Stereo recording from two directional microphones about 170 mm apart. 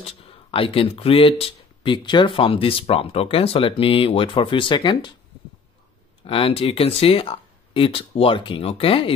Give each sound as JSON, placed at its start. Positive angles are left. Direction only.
{"t": 0.0, "sound": "speech", "side_deg": 30}
{"t": 6.2, "sound": "speech", "side_deg": 35}